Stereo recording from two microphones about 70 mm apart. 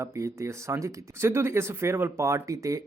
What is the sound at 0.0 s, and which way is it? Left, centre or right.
Speech, right.